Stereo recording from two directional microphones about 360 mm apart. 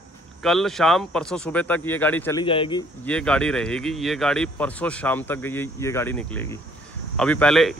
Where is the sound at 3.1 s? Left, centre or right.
Centre.